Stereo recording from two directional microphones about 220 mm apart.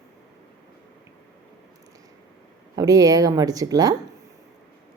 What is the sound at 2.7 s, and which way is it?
A woman's voice, 15° right (ahead or behind).